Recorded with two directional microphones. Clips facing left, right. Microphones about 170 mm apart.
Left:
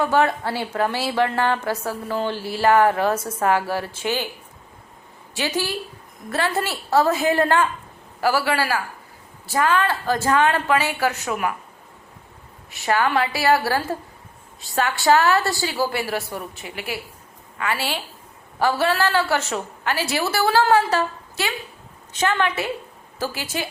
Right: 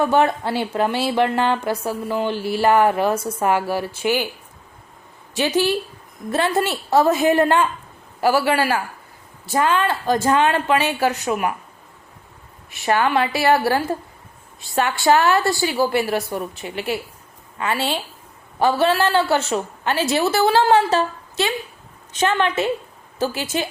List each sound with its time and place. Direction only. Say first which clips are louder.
0.0 s a woman's voice: right 2 dB; 20° right (ahead or behind)
5.3 s a woman's voice: right 6 dB; 20° right (ahead or behind)
12.7 s a woman's voice: right 2 dB; 20° right (ahead or behind)